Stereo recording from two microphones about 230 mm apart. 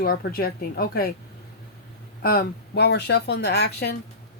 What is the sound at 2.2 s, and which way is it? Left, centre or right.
Speech, left.